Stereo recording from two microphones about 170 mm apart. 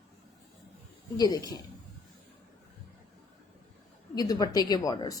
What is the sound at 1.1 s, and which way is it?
Speech, 20° left (ahead or behind).